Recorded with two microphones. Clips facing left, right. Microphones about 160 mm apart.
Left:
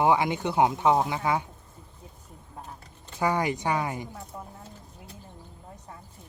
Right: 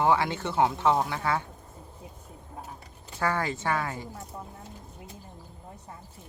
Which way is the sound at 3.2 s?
15° left (ahead or behind).